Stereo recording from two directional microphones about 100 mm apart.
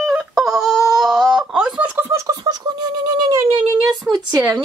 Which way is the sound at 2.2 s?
40° right (ahead or behind).